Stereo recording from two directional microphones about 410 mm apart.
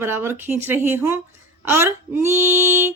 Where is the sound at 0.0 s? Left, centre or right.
Centre.